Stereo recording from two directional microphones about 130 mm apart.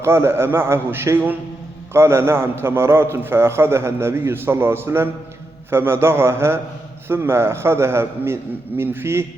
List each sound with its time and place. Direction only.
0.0 s a man's voice: 20° right (ahead or behind)